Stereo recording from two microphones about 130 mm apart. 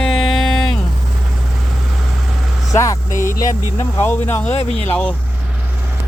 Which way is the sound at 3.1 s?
90° left.